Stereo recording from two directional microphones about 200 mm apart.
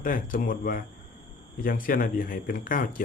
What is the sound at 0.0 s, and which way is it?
Speech, 45° left (ahead or behind).